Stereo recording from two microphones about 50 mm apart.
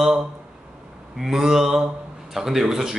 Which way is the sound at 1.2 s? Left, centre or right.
Centre.